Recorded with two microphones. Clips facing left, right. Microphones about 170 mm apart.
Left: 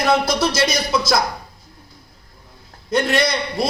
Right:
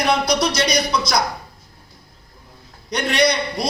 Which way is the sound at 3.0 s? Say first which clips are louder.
Right 1 dB; 5° left (ahead or behind).